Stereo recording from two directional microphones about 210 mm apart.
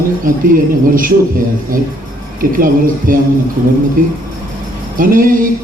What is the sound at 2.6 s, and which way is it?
Speech, 40° right (ahead or behind).